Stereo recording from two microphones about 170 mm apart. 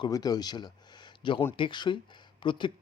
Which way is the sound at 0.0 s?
25° left (ahead or behind).